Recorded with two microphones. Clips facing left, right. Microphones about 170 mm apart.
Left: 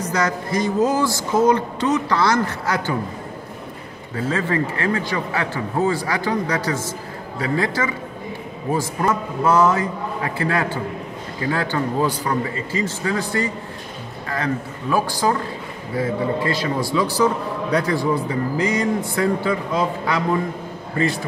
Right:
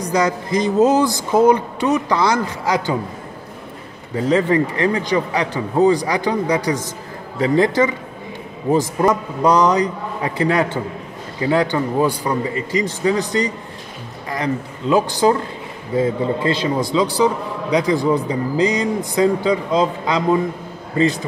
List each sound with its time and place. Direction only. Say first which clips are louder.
0.0 s a man's voice: right 3 dB; 15° right (ahead or behind)
4.1 s a man's voice: right 6 dB; 20° right (ahead or behind)